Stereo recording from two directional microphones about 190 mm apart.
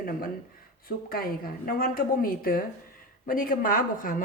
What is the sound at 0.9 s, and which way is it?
A woman's voice, 50° left (ahead or behind).